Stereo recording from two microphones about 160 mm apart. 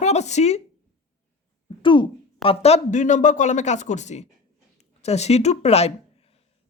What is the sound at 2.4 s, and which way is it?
Speech, 40° left (ahead or behind).